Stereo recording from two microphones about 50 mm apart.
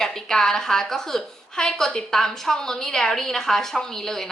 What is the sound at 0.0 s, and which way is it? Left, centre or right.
A woman's voice, centre.